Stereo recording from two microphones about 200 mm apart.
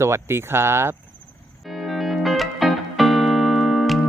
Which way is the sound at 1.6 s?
Centre (ahead or behind).